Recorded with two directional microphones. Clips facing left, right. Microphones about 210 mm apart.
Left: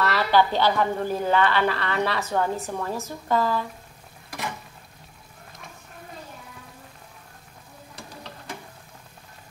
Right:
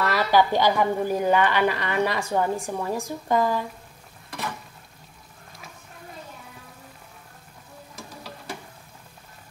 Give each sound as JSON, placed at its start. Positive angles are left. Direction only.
{"t": 0.0, "sound": "speech", "side_deg": -15}